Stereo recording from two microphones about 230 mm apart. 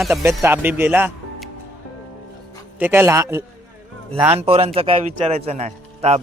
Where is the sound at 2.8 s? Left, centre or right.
Centre.